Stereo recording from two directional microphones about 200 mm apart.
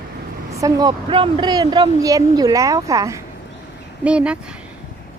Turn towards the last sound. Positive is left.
turn(degrees=-5)  # may be behind; listen again after turning